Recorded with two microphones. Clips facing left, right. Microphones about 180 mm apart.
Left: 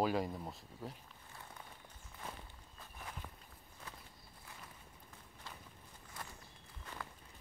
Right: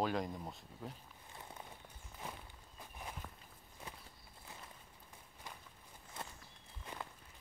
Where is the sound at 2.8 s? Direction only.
15° right (ahead or behind).